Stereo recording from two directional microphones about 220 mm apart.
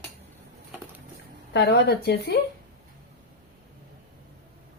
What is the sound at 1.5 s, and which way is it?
Speech, 50° left (ahead or behind).